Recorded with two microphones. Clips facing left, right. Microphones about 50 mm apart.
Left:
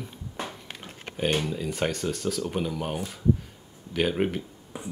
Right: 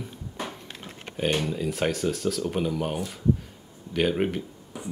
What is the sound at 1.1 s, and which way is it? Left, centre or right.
Speech, centre.